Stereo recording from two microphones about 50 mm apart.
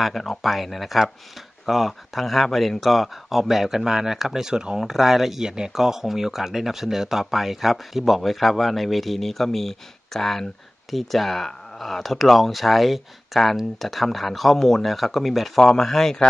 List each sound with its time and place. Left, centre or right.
0.0 s speech: centre